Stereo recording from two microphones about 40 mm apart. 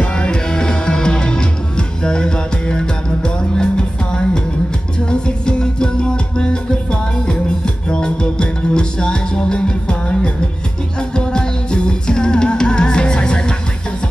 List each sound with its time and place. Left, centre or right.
0.0 s music: left